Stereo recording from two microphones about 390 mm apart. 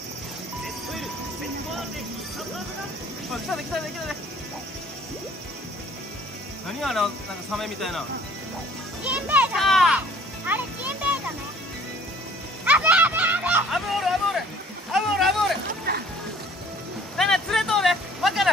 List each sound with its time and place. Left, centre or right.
6.8 s speech: centre
9.0 s a child's voice: centre
12.6 s a sound: centre
15.9 s music: right
17.2 s vehicle: centre